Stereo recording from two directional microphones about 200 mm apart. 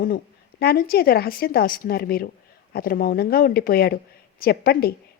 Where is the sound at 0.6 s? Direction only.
50° left (ahead or behind).